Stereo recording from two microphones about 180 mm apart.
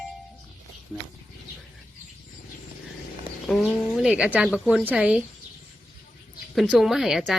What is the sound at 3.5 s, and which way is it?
A man's voice, centre (ahead or behind).